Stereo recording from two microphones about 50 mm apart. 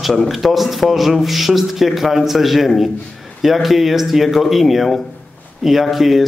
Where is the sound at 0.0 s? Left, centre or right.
Centre.